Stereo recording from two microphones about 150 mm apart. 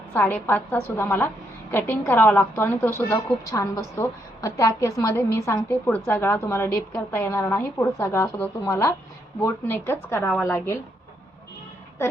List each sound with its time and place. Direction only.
0.1 s a woman's voice: 10° left (ahead or behind)